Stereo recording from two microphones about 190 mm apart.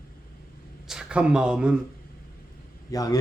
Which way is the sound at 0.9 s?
5° right (ahead or behind).